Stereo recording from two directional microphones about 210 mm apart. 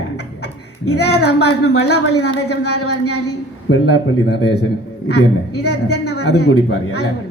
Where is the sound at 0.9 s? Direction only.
50° left (ahead or behind).